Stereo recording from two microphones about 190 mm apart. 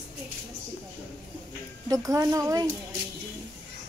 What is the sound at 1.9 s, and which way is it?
Speech, 20° right (ahead or behind).